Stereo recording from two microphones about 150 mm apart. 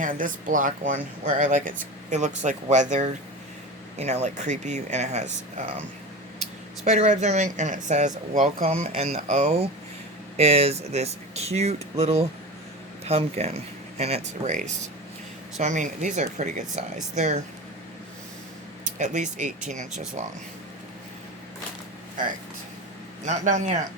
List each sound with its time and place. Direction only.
0.0 s speech: 65° right (ahead or behind); by 5.7 s 50° right (ahead or behind)
6.8 s speech: 50° right (ahead or behind)
8.3 s speech: 65° right (ahead or behind)
8.8 s speech: 50° right (ahead or behind)
18.9 s speech: 55° right (ahead or behind)
23.2 s speech: 55° right (ahead or behind)